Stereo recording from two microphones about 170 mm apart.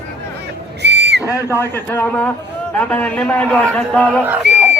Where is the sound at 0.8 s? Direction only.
90° right.